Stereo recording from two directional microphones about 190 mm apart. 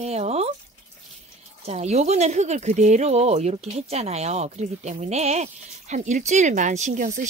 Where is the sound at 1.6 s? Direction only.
35° right (ahead or behind).